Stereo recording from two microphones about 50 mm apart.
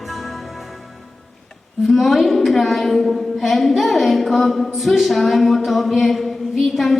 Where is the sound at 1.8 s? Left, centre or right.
Centre.